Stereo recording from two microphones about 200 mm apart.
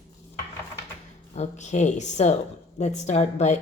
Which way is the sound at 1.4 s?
35° left (ahead or behind).